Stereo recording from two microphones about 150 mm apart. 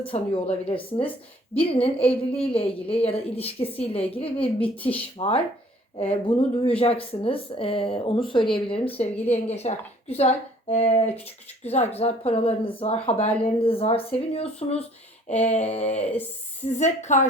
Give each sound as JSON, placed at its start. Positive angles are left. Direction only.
{"t": 0.1, "sound": "speech", "side_deg": 40}
{"t": 4.8, "sound": "speech", "side_deg": 10}
{"t": 5.1, "sound": "a woman's voice", "side_deg": 40}
{"t": 13.2, "sound": "speech", "side_deg": 10}
{"t": 13.6, "sound": "a woman's voice", "side_deg": 40}